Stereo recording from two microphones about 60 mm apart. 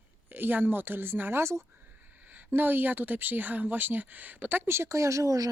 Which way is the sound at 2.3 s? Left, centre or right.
Right.